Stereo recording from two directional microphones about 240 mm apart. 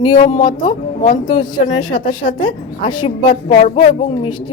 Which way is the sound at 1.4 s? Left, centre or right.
Centre.